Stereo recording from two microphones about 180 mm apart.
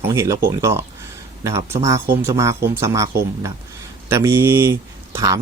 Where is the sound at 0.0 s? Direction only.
15° right (ahead or behind).